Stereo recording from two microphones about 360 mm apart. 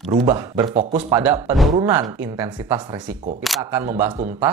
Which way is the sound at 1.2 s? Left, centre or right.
Centre.